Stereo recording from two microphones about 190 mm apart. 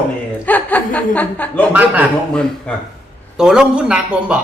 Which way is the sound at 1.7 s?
10° right (ahead or behind).